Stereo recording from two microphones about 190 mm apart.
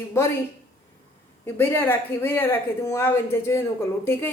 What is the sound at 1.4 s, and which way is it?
Speech, 10° left (ahead or behind).